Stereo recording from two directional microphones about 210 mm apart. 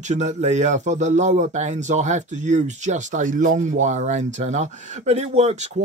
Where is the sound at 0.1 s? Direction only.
35° right (ahead or behind).